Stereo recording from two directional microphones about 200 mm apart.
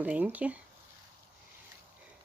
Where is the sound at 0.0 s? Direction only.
10° right (ahead or behind).